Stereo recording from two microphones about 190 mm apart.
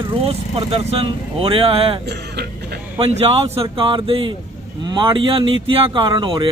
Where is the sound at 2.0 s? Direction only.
60° right (ahead or behind).